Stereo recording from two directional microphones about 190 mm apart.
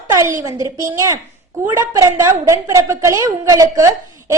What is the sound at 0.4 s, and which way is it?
A woman's voice, 15° right (ahead or behind).